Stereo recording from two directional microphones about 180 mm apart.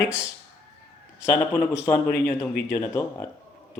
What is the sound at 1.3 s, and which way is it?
Speech, 15° left (ahead or behind).